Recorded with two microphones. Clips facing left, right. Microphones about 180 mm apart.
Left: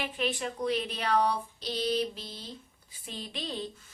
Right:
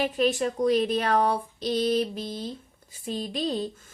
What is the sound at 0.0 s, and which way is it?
A woman's voice, 45° right (ahead or behind).